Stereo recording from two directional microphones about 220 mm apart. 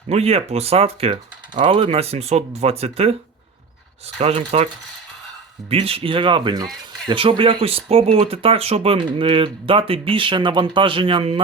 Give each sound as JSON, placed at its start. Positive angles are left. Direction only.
{"t": 0.1, "sound": "speech", "side_deg": -30}
{"t": 4.2, "sound": "speech", "side_deg": -25}
{"t": 5.7, "sound": "speech", "side_deg": -25}